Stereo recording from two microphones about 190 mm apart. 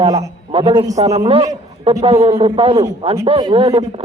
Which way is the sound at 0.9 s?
35° right (ahead or behind).